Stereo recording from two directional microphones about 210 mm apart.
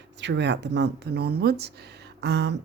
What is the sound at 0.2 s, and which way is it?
Speech, 55° right (ahead or behind).